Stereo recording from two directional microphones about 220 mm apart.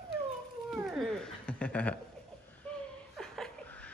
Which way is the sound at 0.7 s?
Centre (ahead or behind).